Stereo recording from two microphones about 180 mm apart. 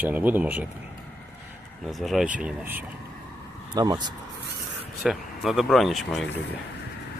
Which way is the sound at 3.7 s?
20° right (ahead or behind).